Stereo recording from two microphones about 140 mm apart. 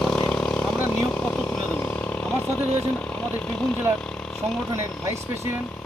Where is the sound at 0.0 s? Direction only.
10° left (ahead or behind).